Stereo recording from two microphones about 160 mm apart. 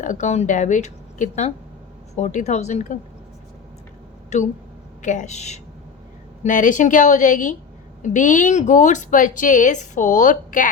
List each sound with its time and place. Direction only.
0.0 s a woman's voice: 50° left (ahead or behind)
4.3 s a woman's voice: 45° left (ahead or behind)